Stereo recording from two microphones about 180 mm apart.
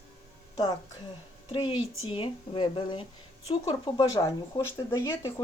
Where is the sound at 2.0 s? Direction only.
25° left (ahead or behind).